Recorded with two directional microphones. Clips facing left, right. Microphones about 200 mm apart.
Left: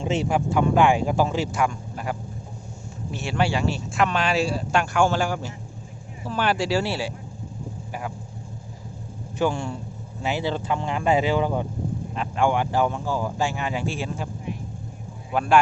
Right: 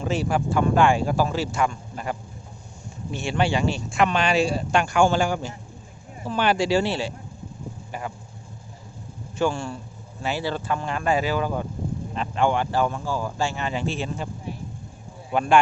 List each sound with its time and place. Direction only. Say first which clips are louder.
0.0 s speech: left 1 dB; 25° left (ahead or behind); by 7.1 s 5° left (ahead or behind)
9.4 s speech: even; 15° left (ahead or behind)
12.1 s speech: even; 10° left (ahead or behind)
15.3 s speech: even; 5° left (ahead or behind)